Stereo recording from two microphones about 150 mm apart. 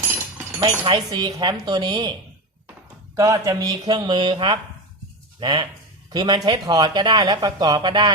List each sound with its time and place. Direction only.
0.6 s speech: 30° right (ahead or behind)
3.2 s speech: 20° right (ahead or behind)